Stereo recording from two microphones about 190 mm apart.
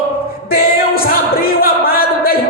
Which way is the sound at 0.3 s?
50° left (ahead or behind).